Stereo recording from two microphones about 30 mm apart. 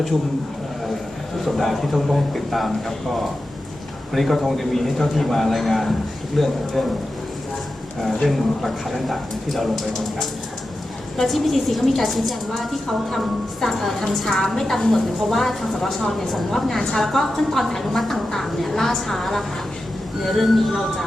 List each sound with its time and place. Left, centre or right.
1.5 s a woman's voice: centre
4.1 s a woman's voice: centre
8.3 s a woman's voice: centre
11.2 s a woman's voice: centre